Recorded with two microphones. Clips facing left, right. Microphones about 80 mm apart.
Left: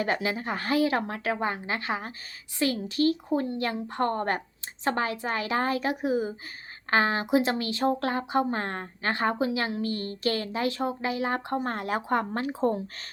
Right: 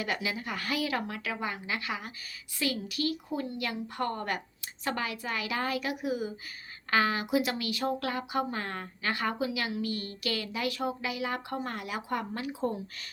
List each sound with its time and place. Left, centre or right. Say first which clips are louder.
0.0 s speech: left 5 dB; left